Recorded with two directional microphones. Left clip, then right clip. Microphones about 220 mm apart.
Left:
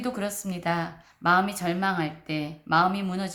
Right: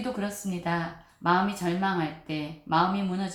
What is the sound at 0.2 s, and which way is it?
Speech, 45° left (ahead or behind).